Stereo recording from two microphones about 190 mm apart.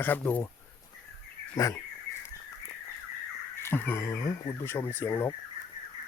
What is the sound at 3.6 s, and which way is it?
Speech, 10° left (ahead or behind).